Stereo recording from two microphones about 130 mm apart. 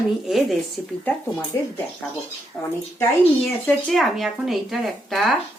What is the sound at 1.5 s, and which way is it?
Speech, 20° left (ahead or behind).